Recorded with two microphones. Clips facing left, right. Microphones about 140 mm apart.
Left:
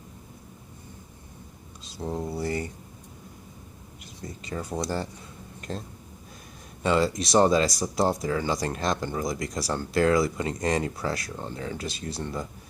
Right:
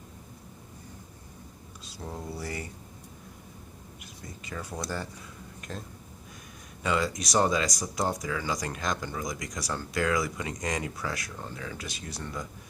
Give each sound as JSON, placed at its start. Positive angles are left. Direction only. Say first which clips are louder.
{"t": 1.8, "sound": "speech", "louder": "left 8 dB", "side_deg": 25}
{"t": 4.0, "sound": "speech", "louder": "left 6 dB", "side_deg": 30}